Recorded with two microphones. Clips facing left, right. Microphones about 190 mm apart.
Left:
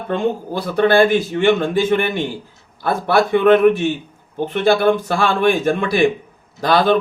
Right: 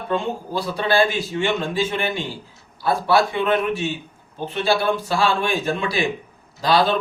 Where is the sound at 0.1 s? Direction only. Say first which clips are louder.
Left 4 dB; 55° left (ahead or behind).